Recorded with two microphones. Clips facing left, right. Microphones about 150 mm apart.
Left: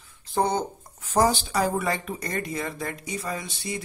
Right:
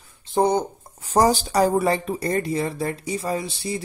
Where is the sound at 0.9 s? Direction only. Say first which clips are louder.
Right 4 dB; 35° right (ahead or behind).